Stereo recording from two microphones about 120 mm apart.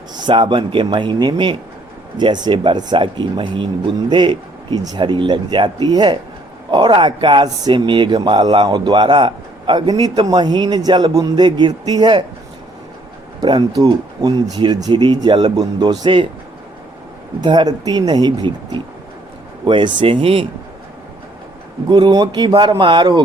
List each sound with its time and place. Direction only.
0.1 s speech: 40° right (ahead or behind)
13.4 s speech: 40° right (ahead or behind)
17.4 s speech: 40° right (ahead or behind)
21.8 s speech: 35° right (ahead or behind)